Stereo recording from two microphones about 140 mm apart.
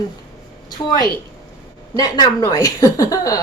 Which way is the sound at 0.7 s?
30° left (ahead or behind).